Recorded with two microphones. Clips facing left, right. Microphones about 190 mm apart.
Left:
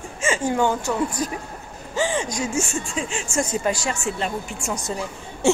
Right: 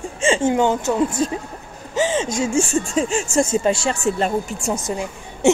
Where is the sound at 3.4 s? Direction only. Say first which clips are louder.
Right 5 dB; 25° right (ahead or behind).